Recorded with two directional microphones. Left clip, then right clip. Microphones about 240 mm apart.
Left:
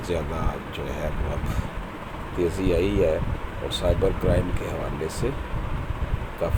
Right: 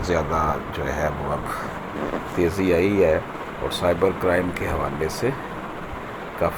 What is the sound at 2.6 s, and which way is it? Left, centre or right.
Speech, right.